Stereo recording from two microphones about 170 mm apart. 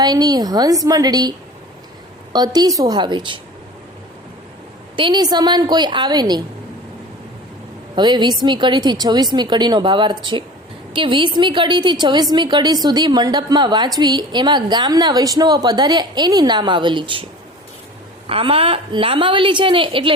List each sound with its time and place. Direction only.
0.0 s a woman's voice: 25° right (ahead or behind)
2.3 s a woman's voice: 25° right (ahead or behind)
4.9 s a woman's voice: 25° right (ahead or behind)
7.9 s a woman's voice: 25° right (ahead or behind)
18.3 s a woman's voice: 35° right (ahead or behind)